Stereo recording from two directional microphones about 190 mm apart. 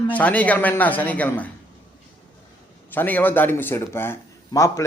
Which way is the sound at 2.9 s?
10° left (ahead or behind).